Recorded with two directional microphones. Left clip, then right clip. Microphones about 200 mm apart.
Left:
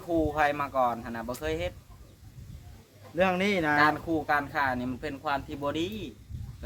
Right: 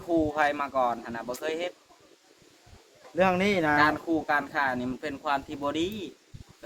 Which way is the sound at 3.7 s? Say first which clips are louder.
Right 1 dB; 10° left (ahead or behind).